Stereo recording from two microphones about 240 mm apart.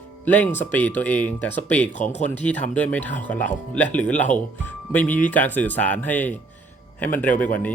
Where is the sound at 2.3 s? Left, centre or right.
Centre.